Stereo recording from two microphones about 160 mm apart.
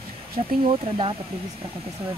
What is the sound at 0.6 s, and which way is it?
Speech, 35° right (ahead or behind).